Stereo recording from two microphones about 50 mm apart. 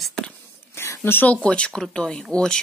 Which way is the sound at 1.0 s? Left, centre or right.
Left.